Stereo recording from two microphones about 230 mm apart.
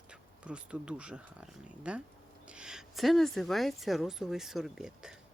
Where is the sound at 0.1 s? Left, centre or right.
Centre.